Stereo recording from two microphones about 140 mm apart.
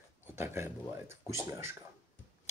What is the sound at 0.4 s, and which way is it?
Speech, 20° right (ahead or behind).